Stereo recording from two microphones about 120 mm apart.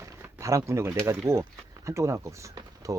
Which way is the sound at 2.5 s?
30° right (ahead or behind).